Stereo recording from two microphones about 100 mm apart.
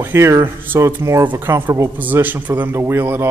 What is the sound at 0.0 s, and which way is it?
A man's voice, 25° right (ahead or behind).